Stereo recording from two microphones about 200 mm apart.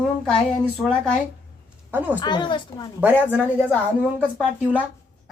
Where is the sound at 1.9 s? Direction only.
10° right (ahead or behind).